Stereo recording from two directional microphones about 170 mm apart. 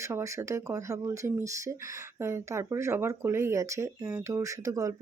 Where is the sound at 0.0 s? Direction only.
15° right (ahead or behind).